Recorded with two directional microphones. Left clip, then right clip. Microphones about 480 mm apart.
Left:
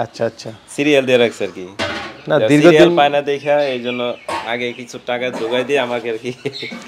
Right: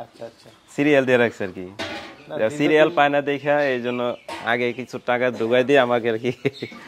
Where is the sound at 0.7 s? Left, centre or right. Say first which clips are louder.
Left 4 dB; right.